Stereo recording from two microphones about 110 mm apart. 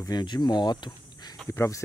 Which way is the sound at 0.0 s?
40° left (ahead or behind).